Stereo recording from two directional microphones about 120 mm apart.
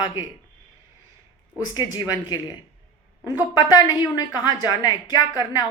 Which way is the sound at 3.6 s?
35° left (ahead or behind).